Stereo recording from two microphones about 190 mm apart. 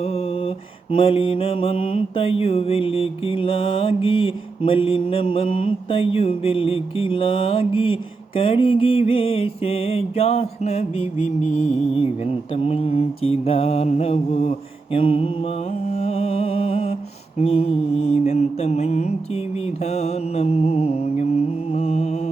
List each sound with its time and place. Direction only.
0.0 s mantra: 30° left (ahead or behind)